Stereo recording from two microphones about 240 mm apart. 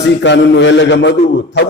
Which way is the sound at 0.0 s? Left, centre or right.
Left.